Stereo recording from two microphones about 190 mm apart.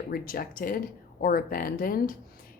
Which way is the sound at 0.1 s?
50° left (ahead or behind).